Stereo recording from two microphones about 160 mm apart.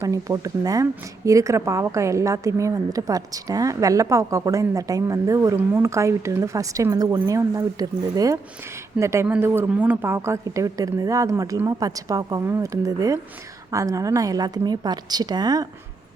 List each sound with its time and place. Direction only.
0.0 s a woman's voice: 20° right (ahead or behind)